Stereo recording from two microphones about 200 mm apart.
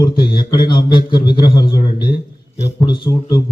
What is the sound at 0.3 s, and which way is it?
A man's voice, 20° left (ahead or behind).